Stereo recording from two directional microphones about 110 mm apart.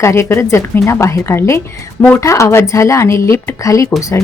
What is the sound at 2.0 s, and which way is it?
Speech, 15° left (ahead or behind).